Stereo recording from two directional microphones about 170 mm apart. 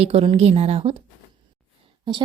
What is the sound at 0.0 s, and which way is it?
Speech, 35° right (ahead or behind).